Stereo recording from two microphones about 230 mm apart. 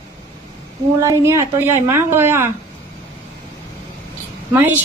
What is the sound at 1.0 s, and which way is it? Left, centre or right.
A woman's voice, centre.